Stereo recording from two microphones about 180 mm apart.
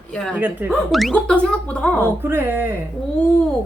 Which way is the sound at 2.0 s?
15° right (ahead or behind).